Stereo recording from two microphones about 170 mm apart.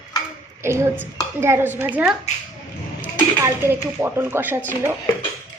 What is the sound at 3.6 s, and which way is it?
Speech, 15° right (ahead or behind).